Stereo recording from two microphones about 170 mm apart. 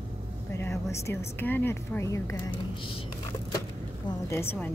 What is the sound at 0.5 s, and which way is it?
Speech, 15° left (ahead or behind).